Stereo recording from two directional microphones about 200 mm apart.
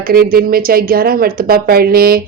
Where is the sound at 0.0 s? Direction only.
45° right (ahead or behind).